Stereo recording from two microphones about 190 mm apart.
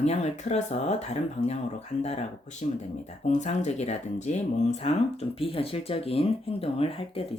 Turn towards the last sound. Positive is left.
turn(degrees=30)  # may be behind; listen again after turning